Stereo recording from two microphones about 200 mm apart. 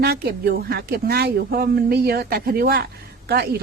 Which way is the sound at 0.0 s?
55° right (ahead or behind).